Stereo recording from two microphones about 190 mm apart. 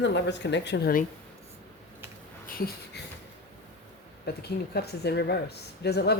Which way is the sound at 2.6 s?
55° left (ahead or behind).